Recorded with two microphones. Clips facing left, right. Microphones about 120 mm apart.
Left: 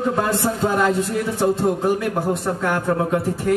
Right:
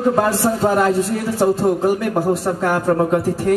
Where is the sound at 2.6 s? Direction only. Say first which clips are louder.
Right 4 dB; 35° right (ahead or behind).